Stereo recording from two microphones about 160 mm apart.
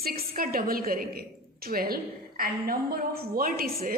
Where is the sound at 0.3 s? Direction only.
65° right (ahead or behind).